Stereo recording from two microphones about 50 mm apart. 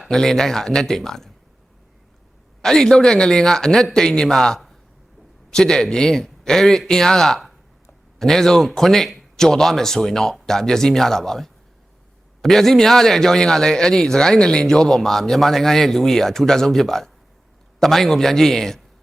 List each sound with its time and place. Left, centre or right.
0.0 s a man's voice: centre
2.6 s a man's voice: centre